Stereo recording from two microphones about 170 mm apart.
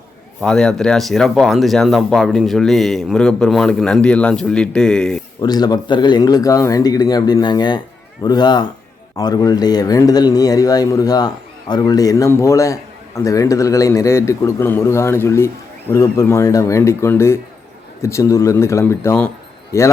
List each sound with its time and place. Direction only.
0.4 s speech: 5° left (ahead or behind)
5.4 s a man's voice: 25° left (ahead or behind)